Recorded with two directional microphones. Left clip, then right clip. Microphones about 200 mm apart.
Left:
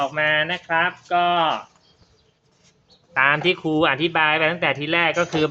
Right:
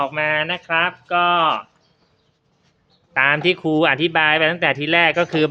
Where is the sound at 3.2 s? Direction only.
20° right (ahead or behind).